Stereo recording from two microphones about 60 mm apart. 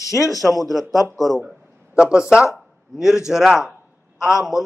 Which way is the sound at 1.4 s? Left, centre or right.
Centre.